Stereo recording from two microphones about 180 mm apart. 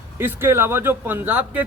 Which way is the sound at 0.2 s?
10° right (ahead or behind).